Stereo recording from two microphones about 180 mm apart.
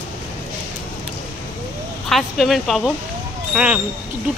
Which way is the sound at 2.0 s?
Centre (ahead or behind).